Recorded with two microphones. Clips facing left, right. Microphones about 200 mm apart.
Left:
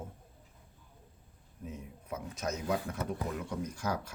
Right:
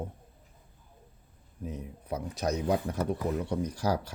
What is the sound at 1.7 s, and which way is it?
Speech, 35° right (ahead or behind).